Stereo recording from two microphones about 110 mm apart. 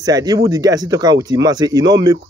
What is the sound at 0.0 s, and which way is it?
A man's voice, 35° right (ahead or behind).